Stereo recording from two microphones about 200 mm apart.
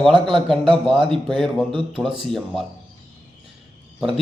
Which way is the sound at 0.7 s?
25° right (ahead or behind).